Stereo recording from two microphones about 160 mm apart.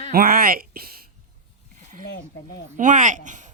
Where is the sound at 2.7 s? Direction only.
55° right (ahead or behind).